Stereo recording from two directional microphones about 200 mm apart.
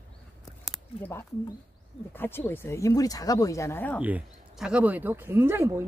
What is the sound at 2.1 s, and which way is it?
Speech, 10° left (ahead or behind).